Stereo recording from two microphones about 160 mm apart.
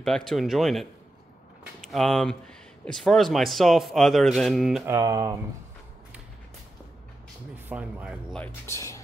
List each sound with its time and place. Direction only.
0.0 s speech: centre (ahead or behind)
4.8 s speech: 20° right (ahead or behind)
7.6 s speech: 10° right (ahead or behind)
8.6 s speech: 20° left (ahead or behind)